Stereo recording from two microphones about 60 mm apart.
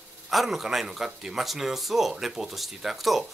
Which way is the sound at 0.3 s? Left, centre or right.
Centre.